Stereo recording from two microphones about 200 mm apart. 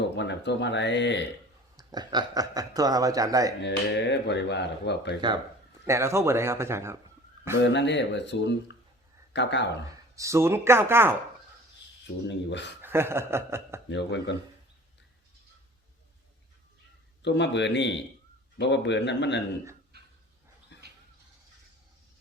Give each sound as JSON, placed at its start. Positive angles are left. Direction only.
{"t": 0.0, "sound": "speech", "side_deg": 60}
{"t": 1.7, "sound": "speech", "side_deg": -20}
{"t": 3.6, "sound": "speech", "side_deg": 60}
{"t": 5.8, "sound": "a man's voice", "side_deg": -15}
{"t": 7.6, "sound": "speech", "side_deg": 60}
{"t": 10.2, "sound": "a man's voice", "side_deg": -15}
{"t": 12.0, "sound": "speech", "side_deg": 60}
{"t": 12.8, "sound": "speech", "side_deg": -10}
{"t": 13.9, "sound": "speech", "side_deg": 60}
{"t": 17.2, "sound": "speech", "side_deg": 60}
{"t": 20.7, "sound": "a sound", "side_deg": 60}